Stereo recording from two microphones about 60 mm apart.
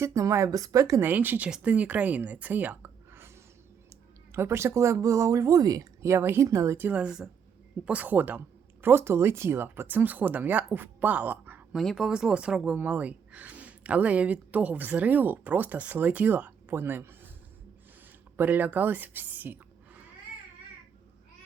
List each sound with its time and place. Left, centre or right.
0.0 s speech: right
1.0 s speech: right
6.1 s speech: right
6.5 s speech: right
6.9 s speech: centre
7.9 s speech: right
11.9 s speech: centre
12.7 s speech: right
18.3 s a woman's voice: right